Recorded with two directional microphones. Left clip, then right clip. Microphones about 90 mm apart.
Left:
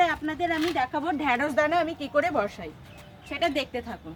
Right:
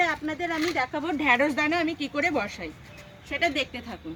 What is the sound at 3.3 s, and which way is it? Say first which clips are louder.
Speech: right 1 dB; 15° right (ahead or behind).